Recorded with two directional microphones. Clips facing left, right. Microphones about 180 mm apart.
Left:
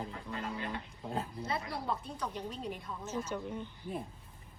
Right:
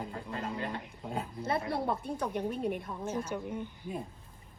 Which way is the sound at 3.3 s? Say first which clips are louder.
Right 2 dB; 10° right (ahead or behind).